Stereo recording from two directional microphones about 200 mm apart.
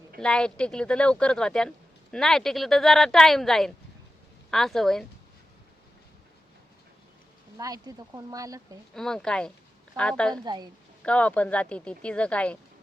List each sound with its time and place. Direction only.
0.2 s speech: 5° left (ahead or behind)
7.6 s speech: 20° right (ahead or behind)
9.0 s speech: centre (ahead or behind)
10.4 s a woman's voice: 20° right (ahead or behind)
11.0 s speech: 5° left (ahead or behind)